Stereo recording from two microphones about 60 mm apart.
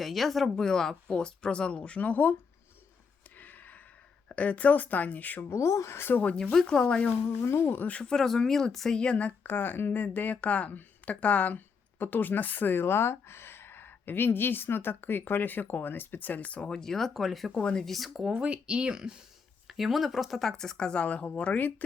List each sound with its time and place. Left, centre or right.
0.0 s speech: centre; by 2.3 s left
3.3 s a sound: left
4.3 s speech: left
5.5 s speech: left
6.0 s a woman's voice: left
6.2 s speech: centre
7.2 s a woman's voice: left
8.0 s speech: centre
9.0 s a woman's voice: left
16.6 s speech: centre
18.2 s speech: centre; by 21.8 s left